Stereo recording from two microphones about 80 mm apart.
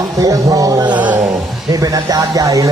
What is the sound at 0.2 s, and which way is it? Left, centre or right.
A man's voice, right.